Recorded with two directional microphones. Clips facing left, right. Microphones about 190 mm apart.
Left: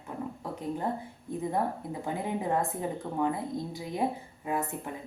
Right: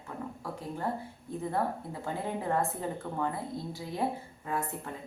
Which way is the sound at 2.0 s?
15° left (ahead or behind).